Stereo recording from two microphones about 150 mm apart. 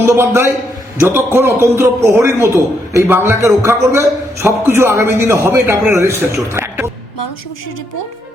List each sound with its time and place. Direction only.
0.0 s a man's voice: 15° right (ahead or behind)